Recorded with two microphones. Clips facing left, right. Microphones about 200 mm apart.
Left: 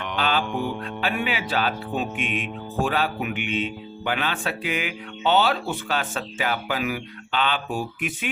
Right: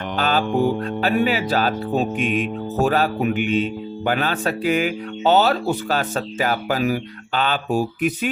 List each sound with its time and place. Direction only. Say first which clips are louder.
0.2 s speech: right 6 dB; 40° right (ahead or behind)